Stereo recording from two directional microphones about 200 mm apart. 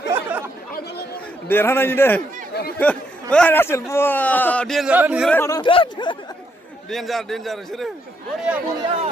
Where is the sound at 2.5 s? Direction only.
50° left (ahead or behind).